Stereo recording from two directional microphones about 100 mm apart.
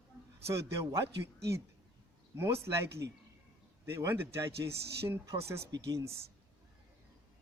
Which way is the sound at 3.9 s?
25° right (ahead or behind).